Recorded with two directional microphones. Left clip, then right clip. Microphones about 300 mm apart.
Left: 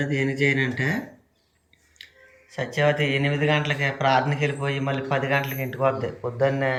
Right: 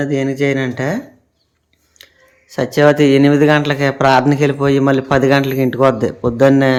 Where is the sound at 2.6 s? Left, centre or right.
Centre.